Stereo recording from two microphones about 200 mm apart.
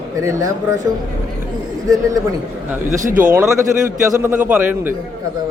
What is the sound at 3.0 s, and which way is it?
Speech, 40° right (ahead or behind).